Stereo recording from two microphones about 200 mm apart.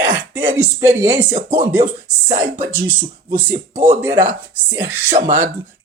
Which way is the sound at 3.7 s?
40° right (ahead or behind).